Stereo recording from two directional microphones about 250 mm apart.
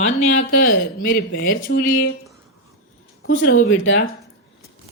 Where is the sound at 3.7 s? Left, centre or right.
Left.